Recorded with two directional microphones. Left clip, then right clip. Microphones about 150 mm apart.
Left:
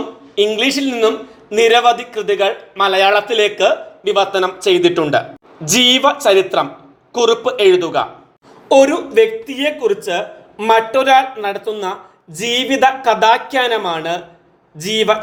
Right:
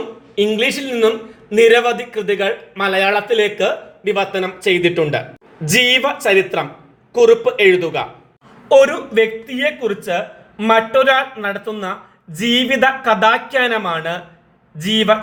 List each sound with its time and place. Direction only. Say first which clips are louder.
0.3 s a man's voice: left 2 dB; 25° left (ahead or behind)
5.7 s a man's voice: left 2 dB; 25° left (ahead or behind)
8.7 s a man's voice: left 1 dB; 35° left (ahead or behind)